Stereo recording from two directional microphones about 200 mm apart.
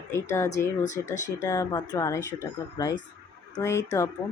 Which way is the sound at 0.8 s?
40° left (ahead or behind).